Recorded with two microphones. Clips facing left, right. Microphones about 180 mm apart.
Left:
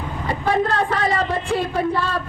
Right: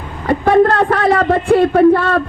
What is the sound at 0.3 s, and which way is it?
A woman's voice, 60° right (ahead or behind).